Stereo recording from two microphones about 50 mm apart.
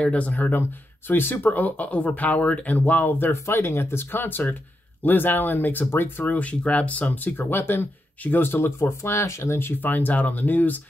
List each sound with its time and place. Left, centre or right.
0.0 s speech: left
0.6 s speech: left
3.4 s speech: left
6.4 s speech: left
8.8 s speech: left
9.8 s speech: left